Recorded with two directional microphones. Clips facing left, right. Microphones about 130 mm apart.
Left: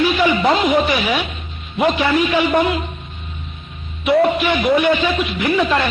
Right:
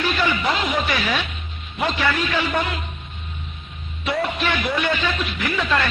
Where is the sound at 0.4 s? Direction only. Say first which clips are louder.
Left 7 dB; 20° left (ahead or behind).